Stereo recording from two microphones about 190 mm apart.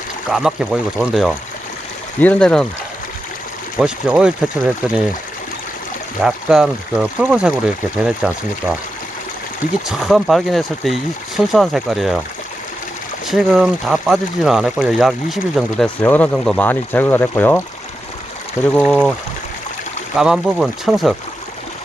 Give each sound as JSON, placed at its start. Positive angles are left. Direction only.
{"t": 0.3, "sound": "speech", "side_deg": -5}
{"t": 2.1, "sound": "speech", "side_deg": 10}
{"t": 3.8, "sound": "speech", "side_deg": -5}
{"t": 6.2, "sound": "speech", "side_deg": -5}
{"t": 9.8, "sound": "speech", "side_deg": 0}
{"t": 13.2, "sound": "speech", "side_deg": 0}
{"t": 18.8, "sound": "speech", "side_deg": 0}
{"t": 20.1, "sound": "speech", "side_deg": -5}